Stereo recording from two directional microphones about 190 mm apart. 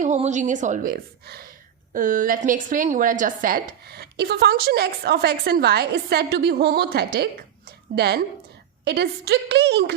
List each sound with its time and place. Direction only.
0.0 s a woman's voice: 40° right (ahead or behind); by 9.9 s 60° right (ahead or behind)